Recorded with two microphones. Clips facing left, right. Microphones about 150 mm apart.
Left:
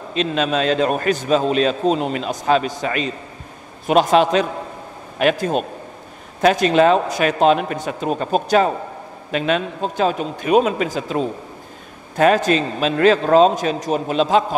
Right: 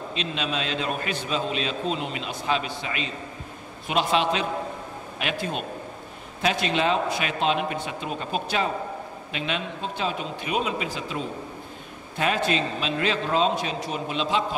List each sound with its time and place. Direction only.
0.1 s a man's voice: 45° left (ahead or behind)